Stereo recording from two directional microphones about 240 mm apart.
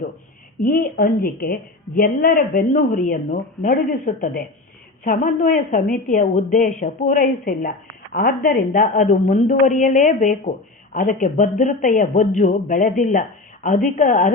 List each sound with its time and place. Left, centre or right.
0.6 s speech: left